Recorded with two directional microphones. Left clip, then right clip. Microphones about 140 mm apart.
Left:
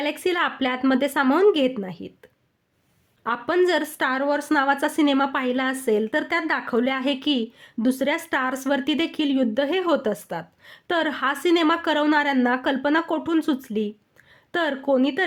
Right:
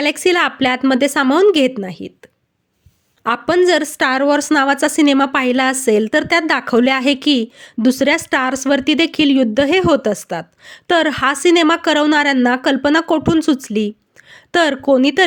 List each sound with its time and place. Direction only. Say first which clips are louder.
0.0 s a woman's voice: right 9 dB; 40° right (ahead or behind)
3.2 s a woman's voice: right 8 dB; 40° right (ahead or behind)